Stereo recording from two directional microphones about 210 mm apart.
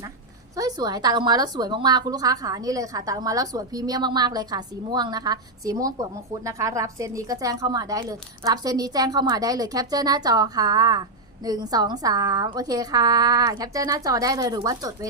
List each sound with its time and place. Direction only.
0.5 s a woman's voice: 20° right (ahead or behind)